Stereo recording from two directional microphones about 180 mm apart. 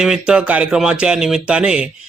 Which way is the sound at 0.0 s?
5° right (ahead or behind).